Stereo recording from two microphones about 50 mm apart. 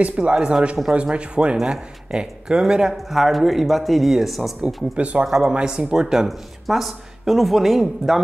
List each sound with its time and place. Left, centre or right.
0.0 s speech: right
3.1 s speech: centre
4.9 s speech: right
6.2 s speech: centre